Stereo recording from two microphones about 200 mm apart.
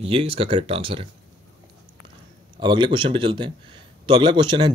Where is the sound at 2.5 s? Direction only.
25° right (ahead or behind).